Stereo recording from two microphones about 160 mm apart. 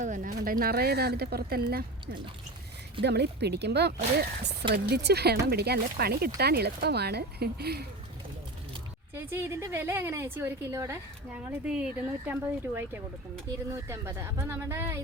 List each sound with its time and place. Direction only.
0.0 s speech: 55° right (ahead or behind)
0.6 s speech: 80° right
3.0 s speech: 90° right
9.1 s a woman's voice: 15° right (ahead or behind)